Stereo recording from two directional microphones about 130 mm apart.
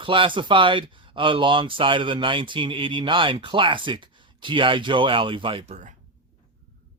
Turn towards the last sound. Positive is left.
turn(degrees=-45)  # may be behind; listen again after turning